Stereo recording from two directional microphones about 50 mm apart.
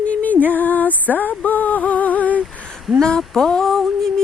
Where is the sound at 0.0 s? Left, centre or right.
Left.